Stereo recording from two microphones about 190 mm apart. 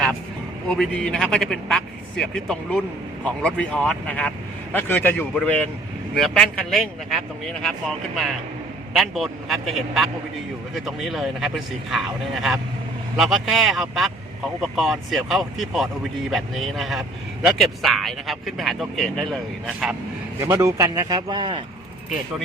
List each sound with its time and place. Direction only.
0.8 s speech: 5° left (ahead or behind)
20.4 s speech: 15° right (ahead or behind)